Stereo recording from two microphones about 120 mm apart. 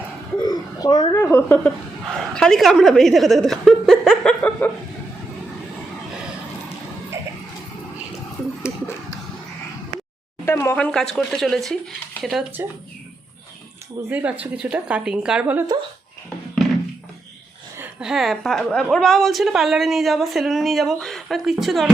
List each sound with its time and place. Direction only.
0.4 s a sound: 35° left (ahead or behind)
1.1 s a woman's voice: 20° left (ahead or behind)
10.4 s a woman's voice: 20° left (ahead or behind); by 12.5 s 5° right (ahead or behind)
14.1 s a woman's voice: 15° right (ahead or behind)
18.0 s a woman's voice: centre (ahead or behind)